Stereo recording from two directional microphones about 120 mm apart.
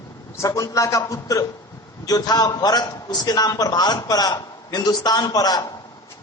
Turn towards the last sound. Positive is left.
turn(degrees=35)  # may be behind; listen again after turning